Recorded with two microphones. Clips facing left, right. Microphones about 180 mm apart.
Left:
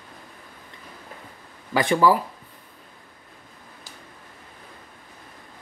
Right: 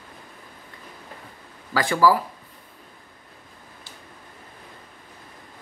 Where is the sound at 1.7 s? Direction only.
20° left (ahead or behind).